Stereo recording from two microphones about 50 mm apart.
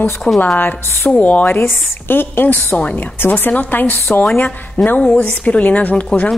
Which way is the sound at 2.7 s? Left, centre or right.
Left.